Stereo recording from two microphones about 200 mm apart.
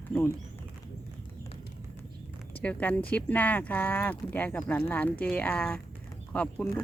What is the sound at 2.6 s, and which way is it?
Speech, 5° left (ahead or behind).